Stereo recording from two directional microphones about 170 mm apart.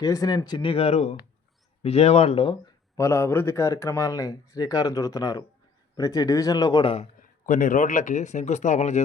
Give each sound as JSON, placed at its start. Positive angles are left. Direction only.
{"t": 0.0, "sound": "speech", "side_deg": 20}
{"t": 2.9, "sound": "speech", "side_deg": 15}
{"t": 7.2, "sound": "speech", "side_deg": 50}